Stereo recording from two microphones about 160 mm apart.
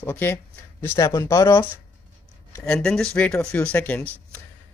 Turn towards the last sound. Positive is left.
turn(degrees=10)  # may be behind; listen again after turning